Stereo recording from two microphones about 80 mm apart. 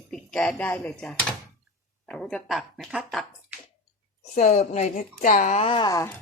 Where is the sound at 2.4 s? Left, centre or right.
Centre.